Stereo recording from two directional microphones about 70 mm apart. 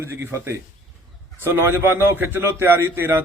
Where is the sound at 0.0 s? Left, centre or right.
Right.